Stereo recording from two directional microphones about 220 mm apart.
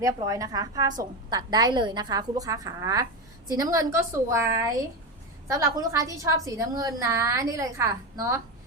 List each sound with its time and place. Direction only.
0.0 s a woman's voice: 15° right (ahead or behind)